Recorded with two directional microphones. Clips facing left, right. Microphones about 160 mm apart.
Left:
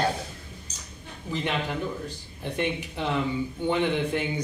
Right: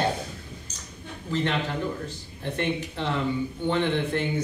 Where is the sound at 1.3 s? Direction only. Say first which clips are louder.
Right 2 dB; 15° left (ahead or behind).